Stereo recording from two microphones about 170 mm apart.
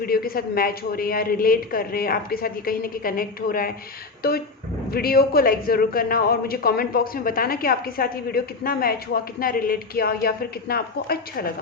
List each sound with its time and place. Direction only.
0.0 s speech: 60° left (ahead or behind)
4.2 s a sound: 65° left (ahead or behind)
4.9 s speech: 60° left (ahead or behind)